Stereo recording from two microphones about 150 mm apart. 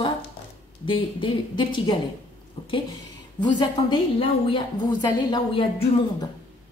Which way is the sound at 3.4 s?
30° left (ahead or behind).